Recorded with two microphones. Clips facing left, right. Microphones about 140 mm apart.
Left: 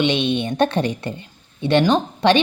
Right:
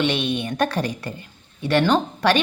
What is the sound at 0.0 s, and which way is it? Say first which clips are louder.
A woman's voice: left 3 dB; 20° left (ahead or behind).